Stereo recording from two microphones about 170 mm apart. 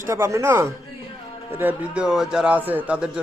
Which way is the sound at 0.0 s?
15° right (ahead or behind).